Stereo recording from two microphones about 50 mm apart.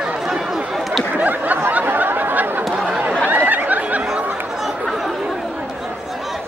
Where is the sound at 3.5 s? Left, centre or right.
Right.